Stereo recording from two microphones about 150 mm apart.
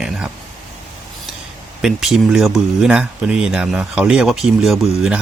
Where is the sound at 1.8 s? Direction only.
5° right (ahead or behind).